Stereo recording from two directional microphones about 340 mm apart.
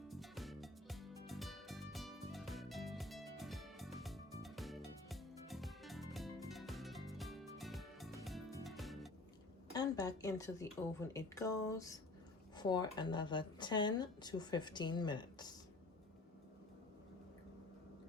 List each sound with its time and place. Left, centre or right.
0.1 s music: centre
9.7 s speech: centre